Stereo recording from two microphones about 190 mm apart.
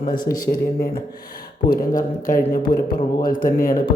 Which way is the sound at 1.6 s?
50° left (ahead or behind).